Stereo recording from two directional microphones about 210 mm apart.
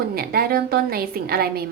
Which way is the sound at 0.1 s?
45° right (ahead or behind).